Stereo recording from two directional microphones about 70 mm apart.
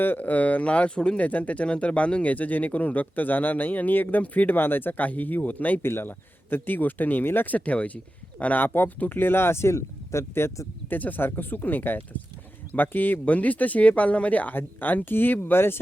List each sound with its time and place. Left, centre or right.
0.0 s speech: left
10.9 s speech: left